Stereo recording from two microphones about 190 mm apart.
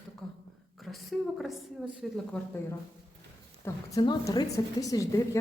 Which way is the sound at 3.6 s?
20° left (ahead or behind).